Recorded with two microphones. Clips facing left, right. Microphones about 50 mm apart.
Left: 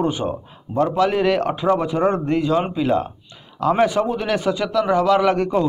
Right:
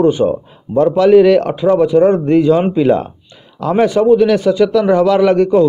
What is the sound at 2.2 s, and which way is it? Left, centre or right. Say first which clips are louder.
Speech: right 8 dB; centre.